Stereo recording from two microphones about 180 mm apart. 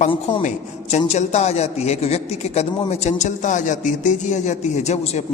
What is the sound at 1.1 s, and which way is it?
A man's voice, 40° left (ahead or behind).